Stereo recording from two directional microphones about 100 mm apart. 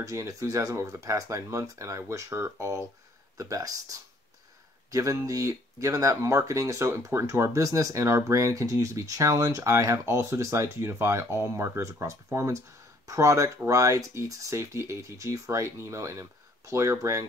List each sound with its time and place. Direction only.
0.0 s speech: 30° right (ahead or behind)